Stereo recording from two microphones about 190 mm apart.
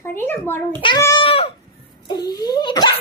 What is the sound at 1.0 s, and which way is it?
Cat, 25° left (ahead or behind).